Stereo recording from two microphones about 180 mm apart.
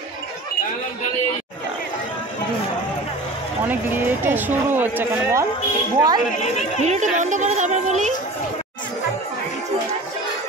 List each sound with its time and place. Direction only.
3.6 s speech: 10° right (ahead or behind)
6.8 s a woman's voice: 40° right (ahead or behind)